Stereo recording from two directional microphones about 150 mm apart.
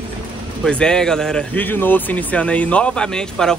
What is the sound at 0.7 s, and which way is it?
Speech, 5° left (ahead or behind).